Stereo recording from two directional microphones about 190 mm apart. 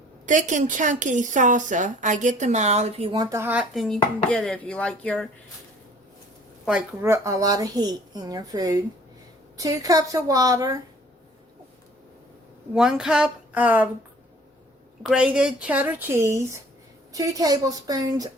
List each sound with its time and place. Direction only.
0.3 s a woman's voice: 40° right (ahead or behind); by 5.3 s 5° left (ahead or behind)
6.7 s speech: 10° right (ahead or behind)
12.7 s a woman's voice: centre (ahead or behind)
15.0 s speech: 5° right (ahead or behind); by 18.3 s 20° right (ahead or behind)